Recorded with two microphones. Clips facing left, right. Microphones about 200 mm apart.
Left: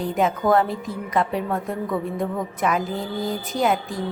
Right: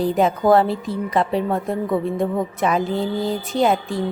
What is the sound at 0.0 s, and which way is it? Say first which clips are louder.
A woman's voice: right 4 dB; 35° right (ahead or behind).